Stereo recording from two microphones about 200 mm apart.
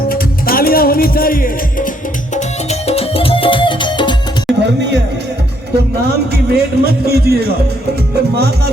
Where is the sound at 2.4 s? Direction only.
30° left (ahead or behind).